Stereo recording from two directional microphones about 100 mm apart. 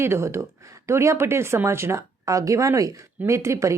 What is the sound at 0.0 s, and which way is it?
A woman's voice, 25° right (ahead or behind).